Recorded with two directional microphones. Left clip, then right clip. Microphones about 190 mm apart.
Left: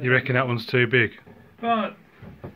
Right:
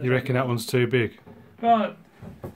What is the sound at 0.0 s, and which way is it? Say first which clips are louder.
Speech: left 3 dB; 15° right (ahead or behind).